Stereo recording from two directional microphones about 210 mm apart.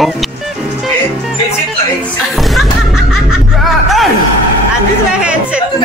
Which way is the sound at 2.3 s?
Centre (ahead or behind).